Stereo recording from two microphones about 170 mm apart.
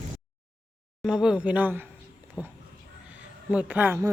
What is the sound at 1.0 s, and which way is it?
Speech, 5° right (ahead or behind).